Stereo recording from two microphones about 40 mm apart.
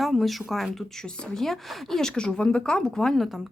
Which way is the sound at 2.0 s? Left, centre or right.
Centre.